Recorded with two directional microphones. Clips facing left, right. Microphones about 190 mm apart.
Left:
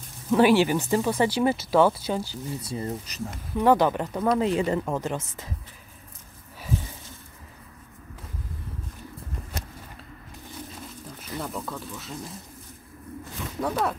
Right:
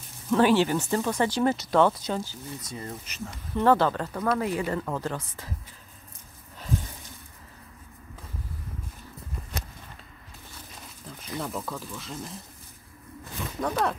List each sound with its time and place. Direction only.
0.3 s speech: 10° left (ahead or behind)
2.6 s speech: 30° left (ahead or behind)
3.5 s speech: 15° left (ahead or behind)
11.3 s speech: centre (ahead or behind)
13.6 s speech: 5° left (ahead or behind)